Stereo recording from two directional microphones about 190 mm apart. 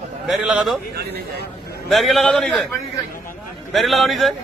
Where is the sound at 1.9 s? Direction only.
Centre (ahead or behind).